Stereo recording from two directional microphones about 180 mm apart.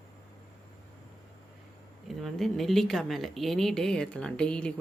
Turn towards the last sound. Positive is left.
turn(degrees=5)  # may be behind; listen again after turning